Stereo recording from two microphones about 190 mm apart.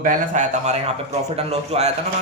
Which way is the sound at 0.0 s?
45° right (ahead or behind).